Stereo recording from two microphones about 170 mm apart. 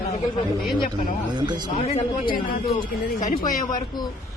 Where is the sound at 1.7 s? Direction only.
40° left (ahead or behind).